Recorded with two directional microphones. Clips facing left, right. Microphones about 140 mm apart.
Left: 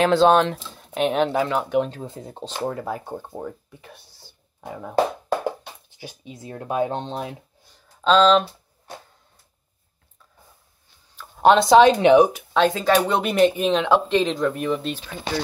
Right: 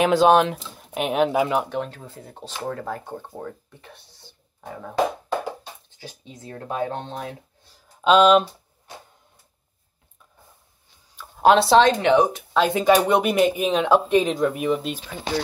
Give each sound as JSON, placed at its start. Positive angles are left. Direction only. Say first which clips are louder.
{"t": 0.0, "sound": "speech", "louder": "even", "side_deg": -10}
{"t": 1.8, "sound": "speech", "louder": "left 6 dB", "side_deg": 20}
{"t": 5.9, "sound": "speech", "louder": "left 2 dB", "side_deg": 15}
{"t": 7.7, "sound": "a sound", "louder": "right 1 dB", "side_deg": -15}
{"t": 11.1, "sound": "a sound", "louder": "even", "side_deg": -5}
{"t": 11.9, "sound": "speech", "louder": "left 4 dB", "side_deg": 15}
{"t": 12.3, "sound": "speech", "louder": "left 1 dB", "side_deg": 0}
{"t": 12.7, "sound": "speech", "louder": "right 2 dB", "side_deg": -15}